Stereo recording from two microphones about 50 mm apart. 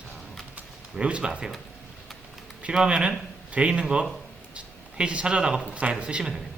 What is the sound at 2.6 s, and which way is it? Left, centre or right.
Speech, centre.